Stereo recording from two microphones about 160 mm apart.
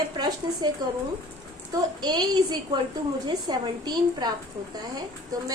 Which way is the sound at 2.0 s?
25° right (ahead or behind).